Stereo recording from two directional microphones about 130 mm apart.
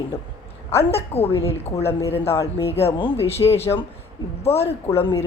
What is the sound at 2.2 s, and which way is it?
Speech, 20° left (ahead or behind).